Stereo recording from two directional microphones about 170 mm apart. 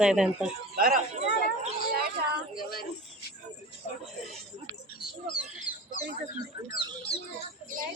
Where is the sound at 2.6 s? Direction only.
65° left (ahead or behind).